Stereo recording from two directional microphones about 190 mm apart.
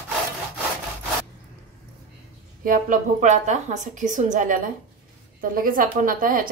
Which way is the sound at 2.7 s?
45° right (ahead or behind).